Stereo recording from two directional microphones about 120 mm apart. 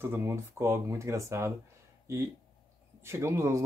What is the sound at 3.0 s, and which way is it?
Speech, 20° right (ahead or behind).